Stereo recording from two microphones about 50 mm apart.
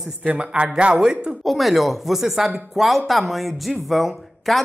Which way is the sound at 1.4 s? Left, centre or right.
Centre.